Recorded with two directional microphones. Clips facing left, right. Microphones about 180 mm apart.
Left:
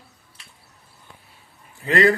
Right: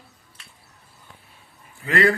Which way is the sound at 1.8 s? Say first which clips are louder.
Left 2 dB; 30° left (ahead or behind).